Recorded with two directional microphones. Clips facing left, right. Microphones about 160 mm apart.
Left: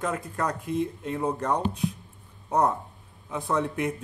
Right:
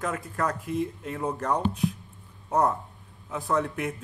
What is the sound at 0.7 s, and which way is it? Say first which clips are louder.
Speech: left 1 dB; 5° right (ahead or behind).